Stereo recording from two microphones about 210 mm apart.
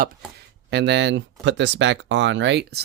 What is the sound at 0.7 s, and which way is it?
Speech, 55° right (ahead or behind).